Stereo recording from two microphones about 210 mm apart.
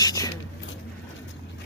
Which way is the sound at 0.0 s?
20° left (ahead or behind).